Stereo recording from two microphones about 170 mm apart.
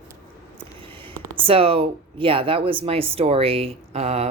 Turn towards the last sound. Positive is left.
turn(degrees=-40)  # may be behind; listen again after turning